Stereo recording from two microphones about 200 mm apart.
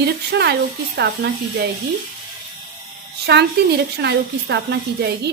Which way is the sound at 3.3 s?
55° right (ahead or behind).